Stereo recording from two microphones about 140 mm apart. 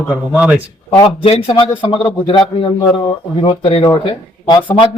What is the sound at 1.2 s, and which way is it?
A man's voice, 45° left (ahead or behind).